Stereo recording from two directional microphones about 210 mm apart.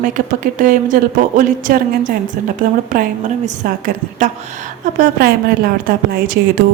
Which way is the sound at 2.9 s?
40° right (ahead or behind).